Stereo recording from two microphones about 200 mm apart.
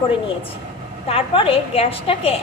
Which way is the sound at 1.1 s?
30° left (ahead or behind).